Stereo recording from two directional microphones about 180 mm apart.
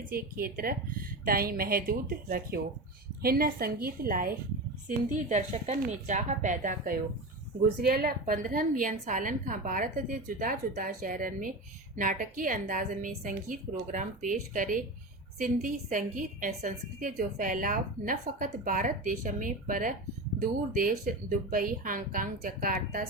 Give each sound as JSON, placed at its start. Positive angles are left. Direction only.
{"t": 0.1, "sound": "a woman's voice", "side_deg": -55}